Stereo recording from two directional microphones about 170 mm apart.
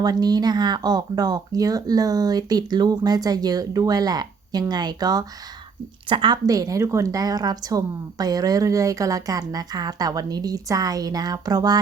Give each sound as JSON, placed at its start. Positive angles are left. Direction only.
{"t": 0.0, "sound": "a woman's voice", "side_deg": -25}